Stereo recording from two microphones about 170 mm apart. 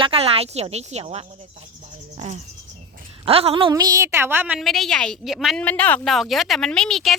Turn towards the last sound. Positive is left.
turn(degrees=0)  # may be behind; listen again after turning